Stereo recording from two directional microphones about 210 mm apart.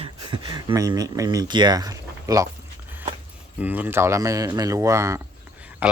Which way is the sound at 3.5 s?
10° right (ahead or behind).